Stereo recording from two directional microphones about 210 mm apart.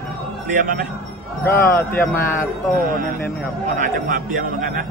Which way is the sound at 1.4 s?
15° left (ahead or behind).